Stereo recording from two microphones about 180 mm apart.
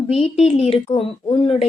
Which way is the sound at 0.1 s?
35° left (ahead or behind).